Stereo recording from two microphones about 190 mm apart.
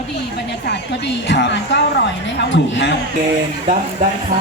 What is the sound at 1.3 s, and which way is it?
A woman's voice, 70° left (ahead or behind).